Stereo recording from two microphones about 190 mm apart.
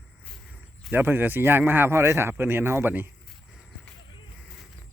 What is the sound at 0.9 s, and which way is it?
A man's voice, 10° right (ahead or behind).